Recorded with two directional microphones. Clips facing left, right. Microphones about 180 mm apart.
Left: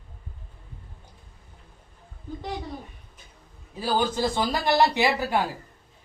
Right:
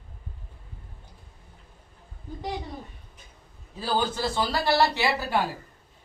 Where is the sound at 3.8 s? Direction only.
15° left (ahead or behind).